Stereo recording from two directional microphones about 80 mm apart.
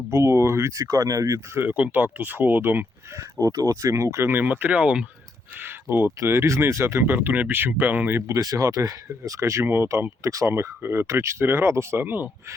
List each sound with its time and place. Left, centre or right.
0.1 s speech: right
1.5 s speech: right
3.4 s speech: right; by 5.0 s centre
5.5 s speech: right
8.3 s speech: right